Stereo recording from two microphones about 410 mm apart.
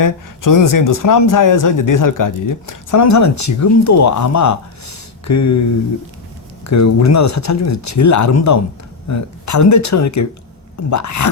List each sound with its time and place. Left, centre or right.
0.0 s speech: left
6.7 s speech: left